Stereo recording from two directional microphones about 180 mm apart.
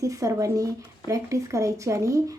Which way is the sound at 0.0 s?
20° right (ahead or behind).